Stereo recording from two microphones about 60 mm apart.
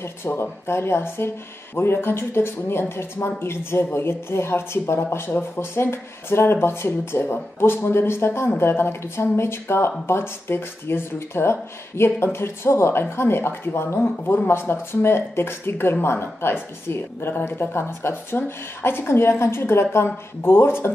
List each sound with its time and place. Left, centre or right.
0.0 s speech: left